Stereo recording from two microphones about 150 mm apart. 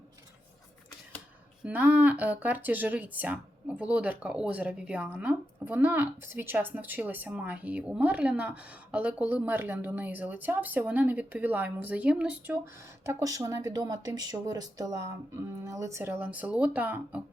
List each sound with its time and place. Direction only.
1.6 s speech: 10° right (ahead or behind)
13.1 s speech: 20° right (ahead or behind)